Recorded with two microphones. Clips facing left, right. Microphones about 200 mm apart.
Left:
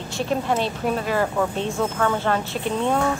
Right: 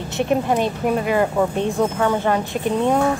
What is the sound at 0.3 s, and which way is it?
Speech, 15° right (ahead or behind).